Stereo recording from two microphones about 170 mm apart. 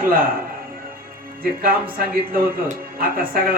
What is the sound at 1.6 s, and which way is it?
A man's voice, 60° right (ahead or behind).